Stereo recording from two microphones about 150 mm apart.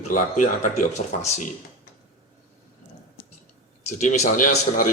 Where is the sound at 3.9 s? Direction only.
55° left (ahead or behind).